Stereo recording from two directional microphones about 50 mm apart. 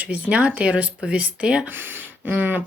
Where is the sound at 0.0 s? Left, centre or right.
Right.